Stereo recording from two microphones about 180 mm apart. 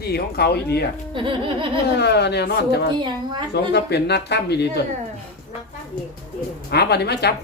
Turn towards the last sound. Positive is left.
turn(degrees=65)  # may be behind; listen again after turning